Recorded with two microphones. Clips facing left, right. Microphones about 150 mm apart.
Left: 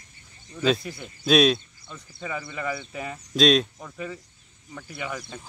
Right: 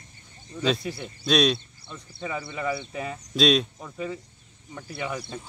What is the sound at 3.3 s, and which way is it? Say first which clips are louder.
Speech: left 2 dB; centre (ahead or behind).